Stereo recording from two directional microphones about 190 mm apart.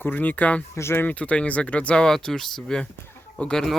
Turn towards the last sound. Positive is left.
turn(degrees=5)  # may be behind; listen again after turning